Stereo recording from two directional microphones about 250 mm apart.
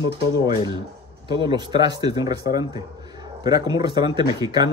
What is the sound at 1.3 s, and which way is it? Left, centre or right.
Speech, centre.